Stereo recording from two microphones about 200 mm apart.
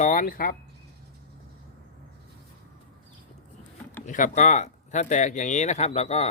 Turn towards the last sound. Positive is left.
turn(degrees=30)  # may be behind; listen again after turning